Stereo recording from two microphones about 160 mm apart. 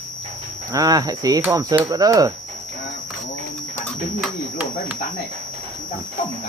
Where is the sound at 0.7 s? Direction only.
25° right (ahead or behind).